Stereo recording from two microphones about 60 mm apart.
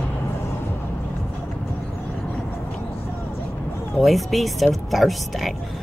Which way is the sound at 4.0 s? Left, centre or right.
Centre.